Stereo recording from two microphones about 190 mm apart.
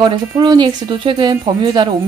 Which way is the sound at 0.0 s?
25° right (ahead or behind).